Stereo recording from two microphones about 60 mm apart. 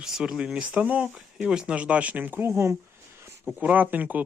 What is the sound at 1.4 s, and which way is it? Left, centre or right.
Speech, centre.